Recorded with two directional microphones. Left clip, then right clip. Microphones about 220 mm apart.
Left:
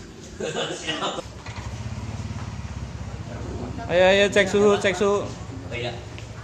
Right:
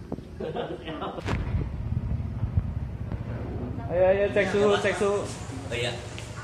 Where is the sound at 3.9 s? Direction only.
45° left (ahead or behind).